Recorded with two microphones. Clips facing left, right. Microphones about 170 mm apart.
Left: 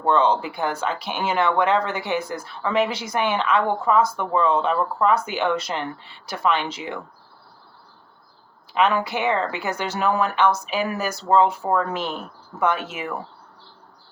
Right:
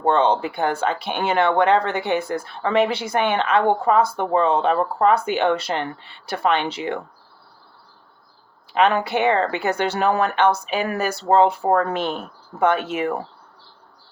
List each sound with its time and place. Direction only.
0.0 s speech: 60° right (ahead or behind)
8.7 s speech: 60° right (ahead or behind)